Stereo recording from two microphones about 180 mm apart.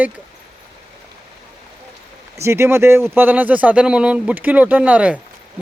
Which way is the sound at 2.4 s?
15° right (ahead or behind).